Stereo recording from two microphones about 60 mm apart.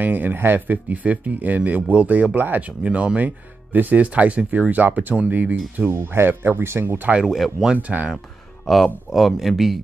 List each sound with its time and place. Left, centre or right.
0.0 s speech: right
7.2 s speech: centre